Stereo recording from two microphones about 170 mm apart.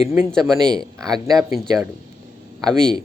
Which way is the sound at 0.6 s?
25° right (ahead or behind).